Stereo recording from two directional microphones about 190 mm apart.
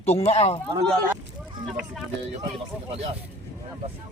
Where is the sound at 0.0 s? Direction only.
35° left (ahead or behind).